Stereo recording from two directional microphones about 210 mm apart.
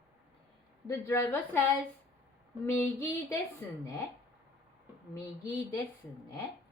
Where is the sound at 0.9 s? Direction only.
15° left (ahead or behind).